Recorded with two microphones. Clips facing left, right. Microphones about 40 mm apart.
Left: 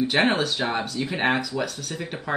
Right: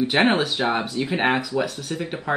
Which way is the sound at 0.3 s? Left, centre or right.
Centre.